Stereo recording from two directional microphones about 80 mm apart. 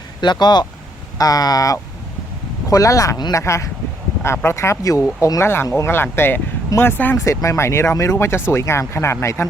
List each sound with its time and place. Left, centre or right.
0.2 s speech: left
1.2 s speech: left
7.3 s speech: left